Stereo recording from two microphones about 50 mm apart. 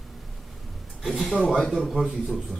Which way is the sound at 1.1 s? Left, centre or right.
Centre.